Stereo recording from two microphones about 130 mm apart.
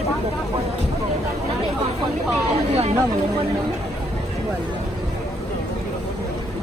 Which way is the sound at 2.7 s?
55° right (ahead or behind).